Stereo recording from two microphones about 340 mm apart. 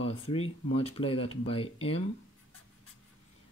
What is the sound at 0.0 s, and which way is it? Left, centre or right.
Speech, centre.